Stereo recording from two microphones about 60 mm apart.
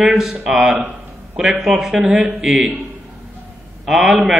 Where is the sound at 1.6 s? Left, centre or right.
Centre.